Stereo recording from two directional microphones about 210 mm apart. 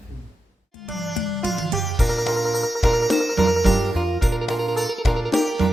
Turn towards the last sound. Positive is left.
turn(degrees=0)  # may be behind; listen again after turning